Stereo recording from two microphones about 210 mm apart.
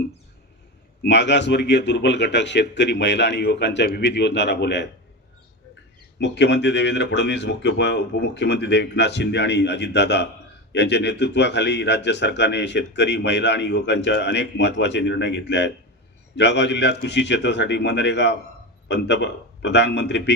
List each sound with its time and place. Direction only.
1.0 s a man's voice: 55° left (ahead or behind)
6.1 s a man's voice: 55° left (ahead or behind)